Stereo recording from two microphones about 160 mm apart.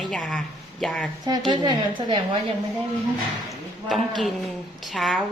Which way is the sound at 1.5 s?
30° right (ahead or behind).